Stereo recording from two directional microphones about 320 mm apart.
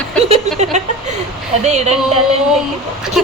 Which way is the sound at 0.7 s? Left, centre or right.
Right.